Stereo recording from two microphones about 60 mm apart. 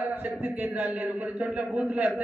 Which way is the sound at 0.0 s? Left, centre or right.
Right.